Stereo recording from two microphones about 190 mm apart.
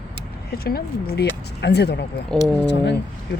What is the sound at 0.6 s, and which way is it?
Speech, 55° left (ahead or behind).